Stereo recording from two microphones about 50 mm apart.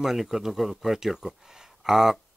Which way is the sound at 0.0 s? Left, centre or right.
Centre.